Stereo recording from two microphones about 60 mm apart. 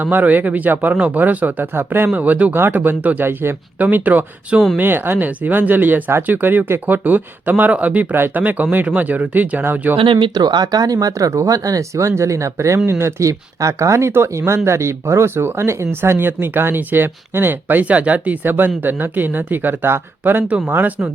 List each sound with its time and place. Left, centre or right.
0.0 s speech: right
1.7 s speech: right
2.1 s speech: right
10.4 s speech: right